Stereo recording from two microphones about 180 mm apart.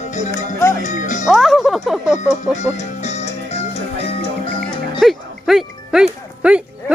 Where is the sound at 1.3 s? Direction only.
Centre (ahead or behind).